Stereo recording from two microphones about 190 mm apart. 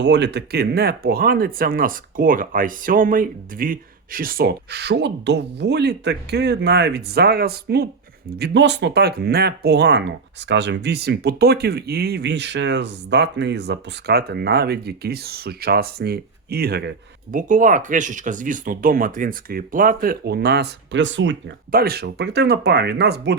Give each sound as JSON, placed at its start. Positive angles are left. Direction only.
{"t": 0.0, "sound": "speech", "side_deg": -65}
{"t": 8.4, "sound": "speech", "side_deg": -70}
{"t": 17.3, "sound": "speech", "side_deg": -45}
{"t": 21.7, "sound": "speech", "side_deg": -55}